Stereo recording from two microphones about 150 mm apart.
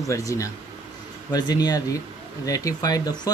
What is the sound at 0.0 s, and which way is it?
Speech, 20° left (ahead or behind).